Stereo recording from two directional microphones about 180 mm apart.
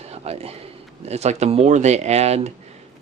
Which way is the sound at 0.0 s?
35° right (ahead or behind).